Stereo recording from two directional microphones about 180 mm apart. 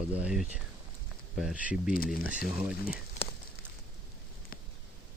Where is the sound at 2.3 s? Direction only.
5° right (ahead or behind).